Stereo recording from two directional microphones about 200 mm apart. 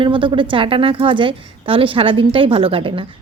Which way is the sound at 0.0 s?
25° right (ahead or behind).